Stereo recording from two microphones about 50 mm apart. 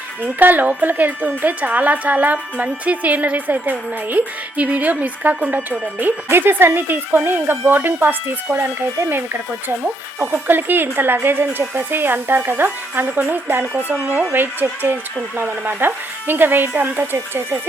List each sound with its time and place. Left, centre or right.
0.3 s speech: right
6.2 s speech: right